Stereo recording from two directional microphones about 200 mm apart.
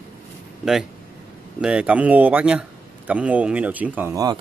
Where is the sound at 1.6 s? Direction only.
5° right (ahead or behind).